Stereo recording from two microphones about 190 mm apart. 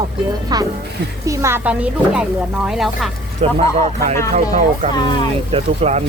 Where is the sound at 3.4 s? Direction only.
30° right (ahead or behind).